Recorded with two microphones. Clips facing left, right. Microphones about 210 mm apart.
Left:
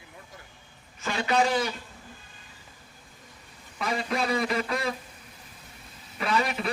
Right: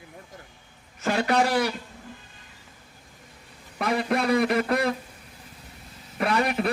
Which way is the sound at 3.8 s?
60° right (ahead or behind).